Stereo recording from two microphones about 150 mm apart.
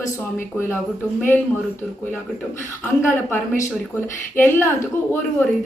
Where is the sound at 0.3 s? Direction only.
15° left (ahead or behind).